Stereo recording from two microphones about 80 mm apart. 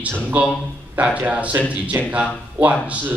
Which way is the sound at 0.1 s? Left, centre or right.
Right.